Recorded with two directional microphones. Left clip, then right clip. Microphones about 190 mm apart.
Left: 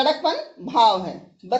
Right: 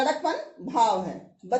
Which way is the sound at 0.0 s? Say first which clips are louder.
Left 5 dB; 30° left (ahead or behind).